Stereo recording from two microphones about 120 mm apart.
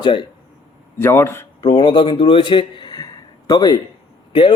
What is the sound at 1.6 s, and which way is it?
A man's voice, 40° left (ahead or behind).